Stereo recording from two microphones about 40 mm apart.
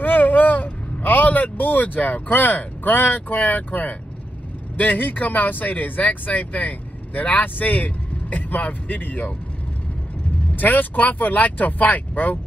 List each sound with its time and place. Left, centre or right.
0.0 s vehicle: left
4.7 s speech: left
10.5 s speech: left